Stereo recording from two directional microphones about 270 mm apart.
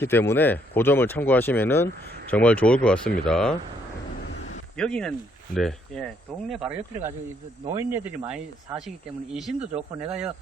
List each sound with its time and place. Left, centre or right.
0.0 s speech: centre
4.3 s a sound: left
4.8 s speech: centre